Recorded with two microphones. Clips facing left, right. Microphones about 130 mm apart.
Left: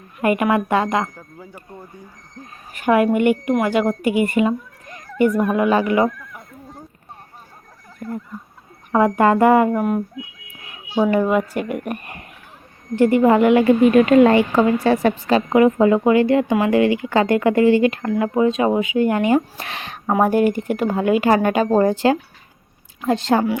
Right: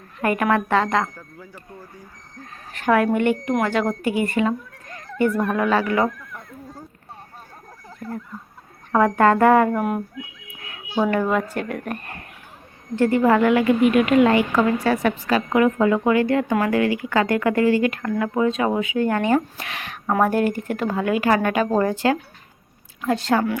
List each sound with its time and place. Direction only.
0.2 s speech: 15° left (ahead or behind)
2.4 s speech: 15° left (ahead or behind)
8.9 s a woman's voice: 10° left (ahead or behind)
19.5 s speech: 30° left (ahead or behind)
20.1 s a woman's voice: 15° left (ahead or behind)